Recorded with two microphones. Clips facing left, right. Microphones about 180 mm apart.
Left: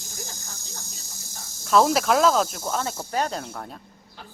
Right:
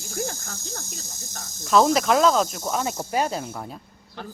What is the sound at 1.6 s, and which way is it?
Speech, centre (ahead or behind).